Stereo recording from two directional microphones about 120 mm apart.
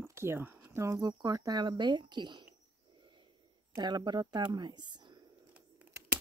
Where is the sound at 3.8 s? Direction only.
40° right (ahead or behind).